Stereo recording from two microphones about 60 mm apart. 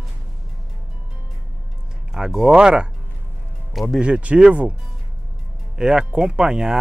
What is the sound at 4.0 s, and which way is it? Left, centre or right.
Speech, right.